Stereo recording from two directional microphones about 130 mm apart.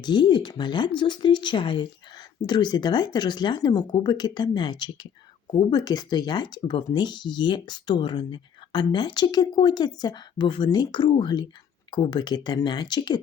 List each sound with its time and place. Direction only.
0.0 s speech: 35° left (ahead or behind)